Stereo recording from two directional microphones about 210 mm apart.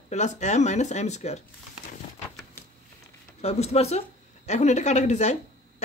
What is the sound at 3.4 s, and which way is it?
Speech, 30° left (ahead or behind).